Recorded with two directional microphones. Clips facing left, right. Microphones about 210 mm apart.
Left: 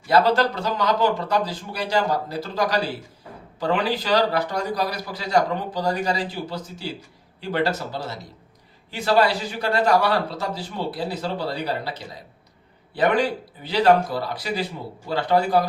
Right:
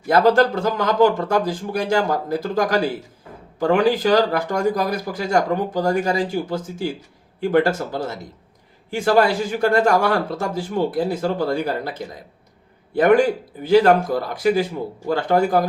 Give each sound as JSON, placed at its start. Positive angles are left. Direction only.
{"t": 0.1, "sound": "speech", "side_deg": -50}